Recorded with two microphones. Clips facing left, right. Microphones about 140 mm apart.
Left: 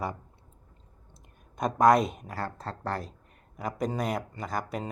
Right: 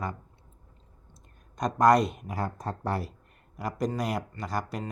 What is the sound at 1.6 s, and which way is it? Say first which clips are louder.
Speech: even; 5° left (ahead or behind).